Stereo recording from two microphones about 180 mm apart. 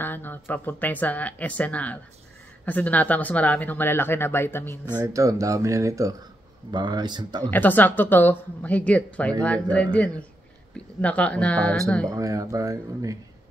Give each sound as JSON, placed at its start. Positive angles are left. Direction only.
{"t": 0.0, "sound": "speech", "side_deg": 10}
{"t": 5.0, "sound": "speech", "side_deg": -20}
{"t": 7.5, "sound": "speech", "side_deg": 10}
{"t": 12.1, "sound": "speech", "side_deg": -20}